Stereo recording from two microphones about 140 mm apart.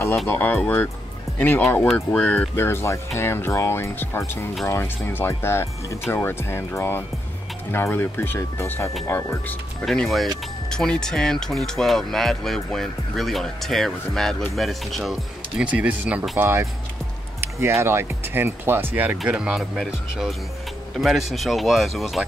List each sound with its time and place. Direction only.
0.3 s speech: 10° left (ahead or behind)
9.8 s speech: centre (ahead or behind)